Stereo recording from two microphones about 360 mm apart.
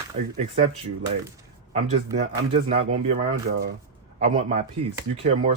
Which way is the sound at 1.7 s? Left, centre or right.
Centre.